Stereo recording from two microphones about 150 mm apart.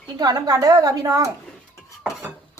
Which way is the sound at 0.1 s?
25° right (ahead or behind).